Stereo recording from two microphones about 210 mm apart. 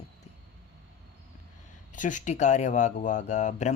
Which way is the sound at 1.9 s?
35° left (ahead or behind).